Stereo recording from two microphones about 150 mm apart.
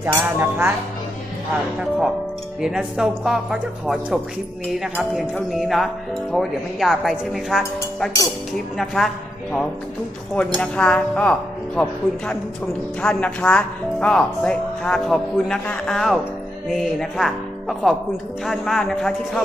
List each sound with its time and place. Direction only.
0.0 s speech: 15° right (ahead or behind)
2.6 s speech: 5° right (ahead or behind)